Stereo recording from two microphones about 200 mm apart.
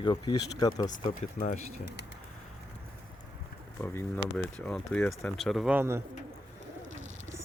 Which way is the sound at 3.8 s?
10° left (ahead or behind).